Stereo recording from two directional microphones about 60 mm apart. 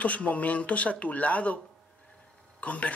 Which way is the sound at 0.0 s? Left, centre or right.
Left.